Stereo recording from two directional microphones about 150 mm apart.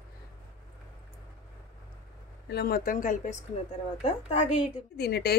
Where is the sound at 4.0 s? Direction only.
40° left (ahead or behind).